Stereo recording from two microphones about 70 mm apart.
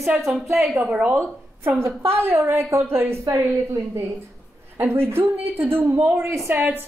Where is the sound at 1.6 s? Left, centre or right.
Right.